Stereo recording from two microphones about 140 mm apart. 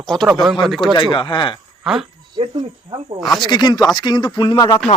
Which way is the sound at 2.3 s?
35° right (ahead or behind).